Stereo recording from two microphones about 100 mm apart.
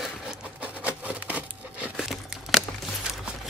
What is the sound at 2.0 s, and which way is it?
Crumpling, centre (ahead or behind).